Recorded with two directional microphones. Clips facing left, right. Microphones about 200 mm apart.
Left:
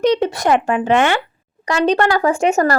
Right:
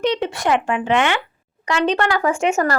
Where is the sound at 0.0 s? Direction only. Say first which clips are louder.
Left 5 dB; 40° left (ahead or behind).